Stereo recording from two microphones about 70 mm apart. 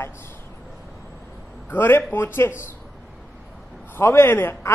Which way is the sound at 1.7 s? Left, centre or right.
Left.